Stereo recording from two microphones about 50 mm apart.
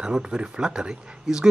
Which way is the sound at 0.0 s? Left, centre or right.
Centre.